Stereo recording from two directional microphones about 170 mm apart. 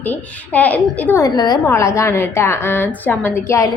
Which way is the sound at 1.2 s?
25° left (ahead or behind).